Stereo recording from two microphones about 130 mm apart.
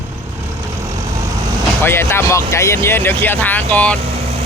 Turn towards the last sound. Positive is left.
turn(degrees=10)  # may be behind; listen again after turning